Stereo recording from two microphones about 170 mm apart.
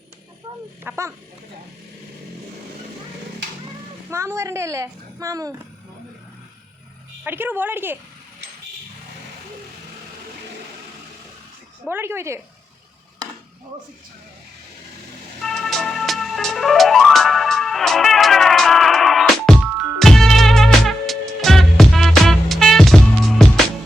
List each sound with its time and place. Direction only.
0.9 s speech: 15° right (ahead or behind)
4.1 s a woman's voice: 15° right (ahead or behind)
7.3 s speech: 10° right (ahead or behind)
11.9 s speech: 15° right (ahead or behind)
15.4 s music: centre (ahead or behind)